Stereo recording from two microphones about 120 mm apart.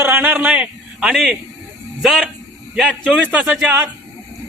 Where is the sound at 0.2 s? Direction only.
10° right (ahead or behind).